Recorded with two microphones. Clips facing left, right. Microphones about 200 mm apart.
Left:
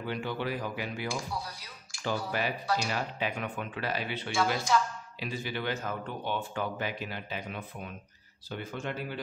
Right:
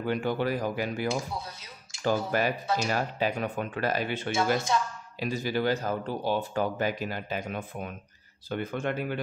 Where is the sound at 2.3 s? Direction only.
45° right (ahead or behind).